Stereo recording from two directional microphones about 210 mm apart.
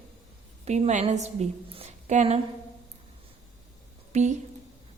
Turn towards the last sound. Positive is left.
turn(degrees=-35)  # may be behind; listen again after turning